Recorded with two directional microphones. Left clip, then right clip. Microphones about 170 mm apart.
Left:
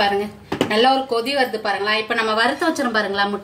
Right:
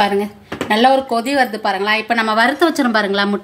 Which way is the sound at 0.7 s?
60° right (ahead or behind).